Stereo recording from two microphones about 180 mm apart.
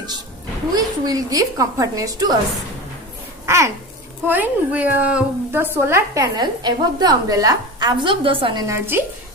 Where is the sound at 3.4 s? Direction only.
15° right (ahead or behind).